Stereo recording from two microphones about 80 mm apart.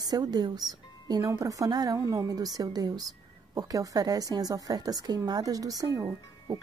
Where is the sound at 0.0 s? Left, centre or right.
Right.